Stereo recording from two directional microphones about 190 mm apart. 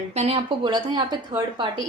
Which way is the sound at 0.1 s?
35° right (ahead or behind).